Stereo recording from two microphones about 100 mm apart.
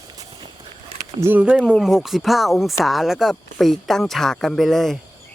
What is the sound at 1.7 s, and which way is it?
Speech, 5° right (ahead or behind).